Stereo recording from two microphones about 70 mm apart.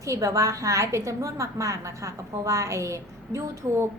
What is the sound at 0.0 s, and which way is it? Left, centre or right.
A woman's voice, right.